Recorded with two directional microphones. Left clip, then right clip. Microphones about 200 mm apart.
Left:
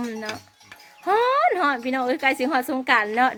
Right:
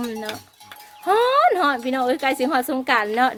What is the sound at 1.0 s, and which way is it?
Speech, 5° right (ahead or behind).